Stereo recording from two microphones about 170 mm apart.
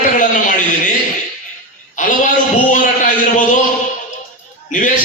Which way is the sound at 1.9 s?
50° left (ahead or behind).